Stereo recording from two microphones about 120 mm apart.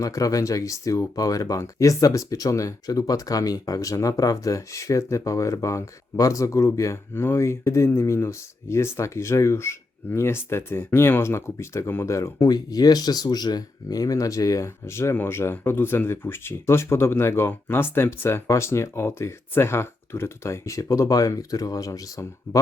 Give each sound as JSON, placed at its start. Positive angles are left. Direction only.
{"t": 0.0, "sound": "speech", "side_deg": 30}